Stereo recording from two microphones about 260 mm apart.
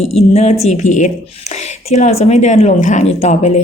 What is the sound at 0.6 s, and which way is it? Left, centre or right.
Speech, left.